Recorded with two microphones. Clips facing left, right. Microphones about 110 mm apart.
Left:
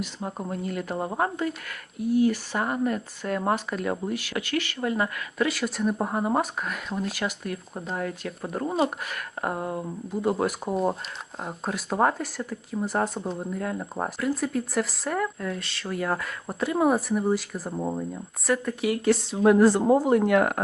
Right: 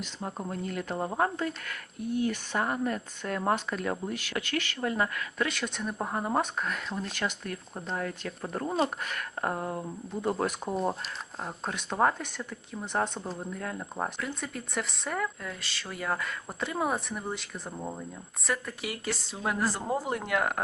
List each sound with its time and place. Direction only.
0.0 s speech: 10° left (ahead or behind)
17.7 s speech: 20° left (ahead or behind)
18.4 s speech: centre (ahead or behind)